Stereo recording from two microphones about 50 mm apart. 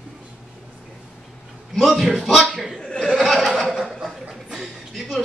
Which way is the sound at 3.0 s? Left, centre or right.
Centre.